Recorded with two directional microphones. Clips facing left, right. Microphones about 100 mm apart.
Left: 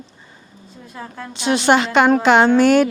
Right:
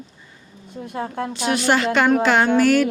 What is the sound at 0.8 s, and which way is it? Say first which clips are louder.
Speech: right 7 dB; 60° right (ahead or behind).